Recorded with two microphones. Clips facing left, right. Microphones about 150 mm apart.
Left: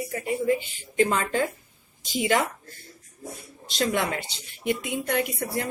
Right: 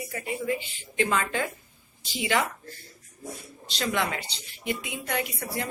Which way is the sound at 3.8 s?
45° left (ahead or behind).